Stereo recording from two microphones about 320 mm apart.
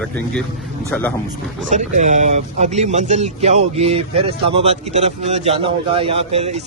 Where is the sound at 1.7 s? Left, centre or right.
Right.